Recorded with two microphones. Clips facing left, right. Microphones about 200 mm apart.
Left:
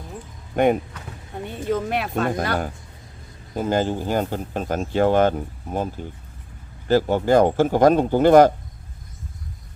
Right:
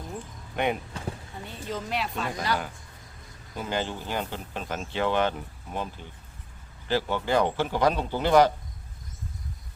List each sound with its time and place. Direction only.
0.5 s speech: 45° left (ahead or behind)